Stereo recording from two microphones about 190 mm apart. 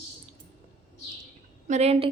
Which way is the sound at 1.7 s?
35° right (ahead or behind).